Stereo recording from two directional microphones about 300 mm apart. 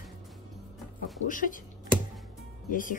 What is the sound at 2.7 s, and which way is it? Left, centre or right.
Speech, left.